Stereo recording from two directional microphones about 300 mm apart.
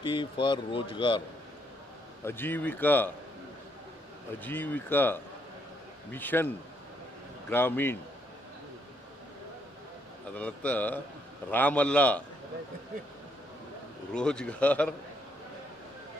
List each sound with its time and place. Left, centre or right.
0.0 s speech: centre
2.2 s speech: centre
4.4 s speech: centre
7.5 s speech: centre
10.3 s speech: centre
14.1 s speech: centre